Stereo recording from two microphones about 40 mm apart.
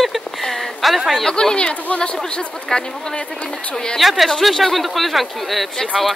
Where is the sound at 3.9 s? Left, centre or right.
Centre.